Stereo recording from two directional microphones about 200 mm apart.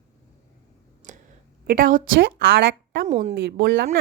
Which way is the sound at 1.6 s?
45° right (ahead or behind).